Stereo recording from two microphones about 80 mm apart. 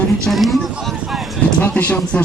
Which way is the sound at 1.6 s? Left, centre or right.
Centre.